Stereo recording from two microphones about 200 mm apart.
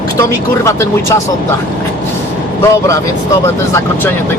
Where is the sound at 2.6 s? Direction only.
15° left (ahead or behind).